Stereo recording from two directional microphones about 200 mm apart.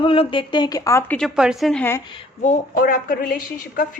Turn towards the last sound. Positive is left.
turn(degrees=45)  # may be behind; listen again after turning